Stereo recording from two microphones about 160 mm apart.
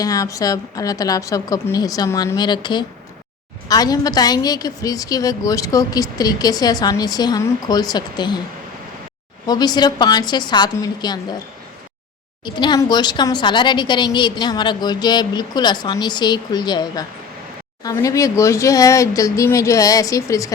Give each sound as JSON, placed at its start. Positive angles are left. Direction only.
{"t": 0.0, "sound": "a woman's voice", "side_deg": 20}
{"t": 9.5, "sound": "a woman's voice", "side_deg": 25}
{"t": 12.5, "sound": "a woman's voice", "side_deg": 30}